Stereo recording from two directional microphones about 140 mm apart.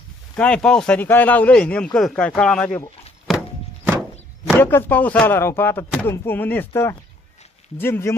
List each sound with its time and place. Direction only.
0.4 s speech: 5° left (ahead or behind)
3.3 s horse: centre (ahead or behind)
4.6 s speech: 15° left (ahead or behind)